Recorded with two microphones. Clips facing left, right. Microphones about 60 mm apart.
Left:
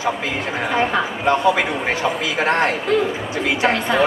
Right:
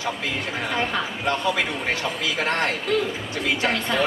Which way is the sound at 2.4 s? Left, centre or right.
Left.